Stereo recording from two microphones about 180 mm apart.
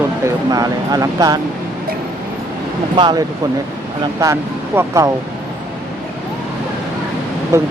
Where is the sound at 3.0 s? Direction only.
20° right (ahead or behind).